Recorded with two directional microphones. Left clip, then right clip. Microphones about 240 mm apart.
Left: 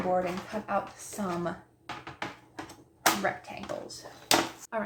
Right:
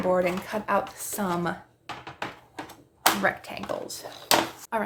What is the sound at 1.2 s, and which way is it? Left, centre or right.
Speech, right.